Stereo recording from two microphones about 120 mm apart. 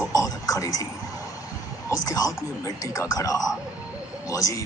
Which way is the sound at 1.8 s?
30° left (ahead or behind).